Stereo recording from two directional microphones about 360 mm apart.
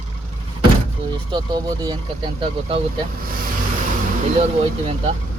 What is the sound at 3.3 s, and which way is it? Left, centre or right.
Vehicle, right.